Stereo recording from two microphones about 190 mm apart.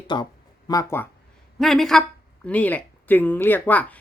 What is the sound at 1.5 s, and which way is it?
Speech, centre (ahead or behind).